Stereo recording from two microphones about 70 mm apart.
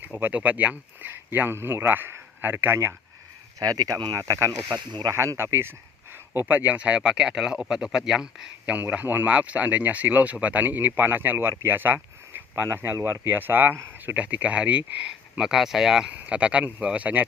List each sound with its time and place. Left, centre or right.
0.2 s speech: right
3.6 s speech: right
4.2 s speech: right
4.9 s speech: right
5.4 s speech: right
6.3 s speech: right; by 8.7 s centre
8.7 s speech: right
12.3 s a sound: right
13.0 s speech: right
13.2 s speech: right; by 16.0 s centre
16.0 s speech: centre